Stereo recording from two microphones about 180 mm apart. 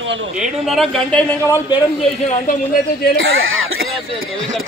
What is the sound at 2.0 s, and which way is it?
Speech, 40° left (ahead or behind).